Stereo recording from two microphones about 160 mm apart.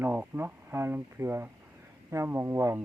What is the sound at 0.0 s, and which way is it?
Speech, 15° right (ahead or behind).